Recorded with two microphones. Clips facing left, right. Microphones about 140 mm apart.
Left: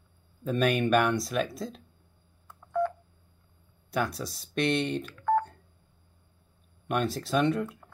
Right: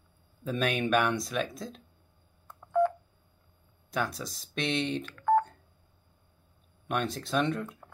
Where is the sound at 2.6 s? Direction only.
10° right (ahead or behind).